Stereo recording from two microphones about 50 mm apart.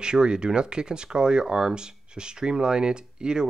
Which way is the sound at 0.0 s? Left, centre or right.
Centre.